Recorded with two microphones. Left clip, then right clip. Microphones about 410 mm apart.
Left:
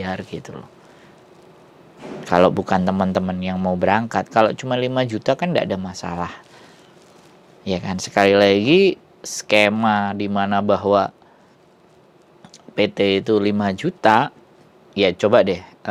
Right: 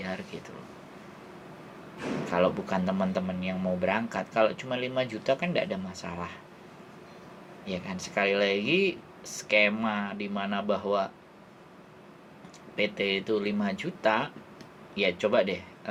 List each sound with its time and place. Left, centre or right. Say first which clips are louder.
0.0 s speech: left 9 dB; left
2.2 s speech: left 12 dB; left
7.6 s speech: left 11 dB; left
12.7 s speech: left 10 dB; left